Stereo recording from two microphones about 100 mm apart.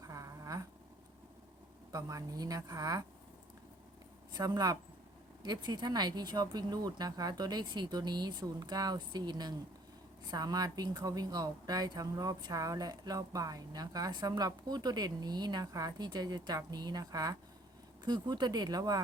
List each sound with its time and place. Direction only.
0.0 s a sound: 35° right (ahead or behind)
1.9 s speech: 35° right (ahead or behind)
4.3 s speech: 45° right (ahead or behind)